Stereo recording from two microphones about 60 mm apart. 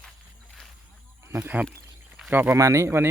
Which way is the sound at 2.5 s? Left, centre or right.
Right.